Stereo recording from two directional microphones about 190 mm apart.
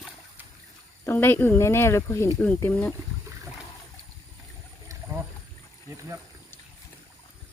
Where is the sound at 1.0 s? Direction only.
10° left (ahead or behind).